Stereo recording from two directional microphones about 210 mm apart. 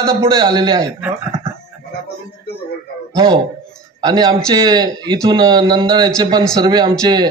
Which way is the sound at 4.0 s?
20° right (ahead or behind).